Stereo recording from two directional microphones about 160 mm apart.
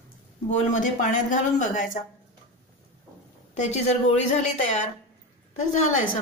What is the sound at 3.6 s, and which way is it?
Speech, 45° left (ahead or behind).